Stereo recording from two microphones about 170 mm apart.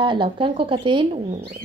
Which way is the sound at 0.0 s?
30° right (ahead or behind).